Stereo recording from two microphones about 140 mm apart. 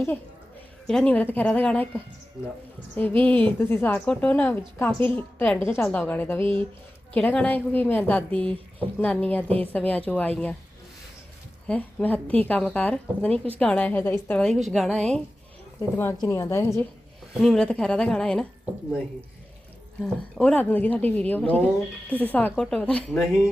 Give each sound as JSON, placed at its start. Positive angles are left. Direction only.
{"t": 0.9, "sound": "a woman's voice", "side_deg": 5}
{"t": 11.7, "sound": "a woman's voice", "side_deg": 10}
{"t": 14.4, "sound": "a woman's voice", "side_deg": 0}
{"t": 15.8, "sound": "a woman's voice", "side_deg": 15}
{"t": 17.4, "sound": "a woman's voice", "side_deg": 5}
{"t": 20.0, "sound": "a woman's voice", "side_deg": 10}